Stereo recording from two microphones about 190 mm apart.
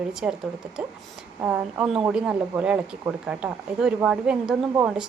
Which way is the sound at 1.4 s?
5° right (ahead or behind).